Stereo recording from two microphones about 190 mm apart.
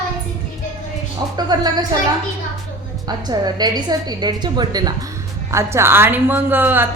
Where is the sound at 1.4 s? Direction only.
20° right (ahead or behind).